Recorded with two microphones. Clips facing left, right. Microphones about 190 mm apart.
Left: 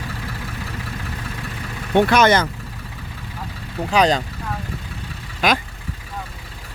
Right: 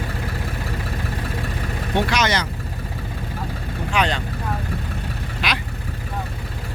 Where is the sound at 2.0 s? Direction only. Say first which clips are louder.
Left 7 dB; 55° left (ahead or behind).